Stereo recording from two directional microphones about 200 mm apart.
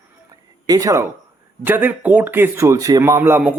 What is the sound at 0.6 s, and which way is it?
Speech, 20° right (ahead or behind).